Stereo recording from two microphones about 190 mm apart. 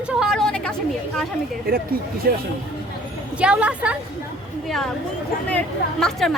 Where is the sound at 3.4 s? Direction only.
5° right (ahead or behind).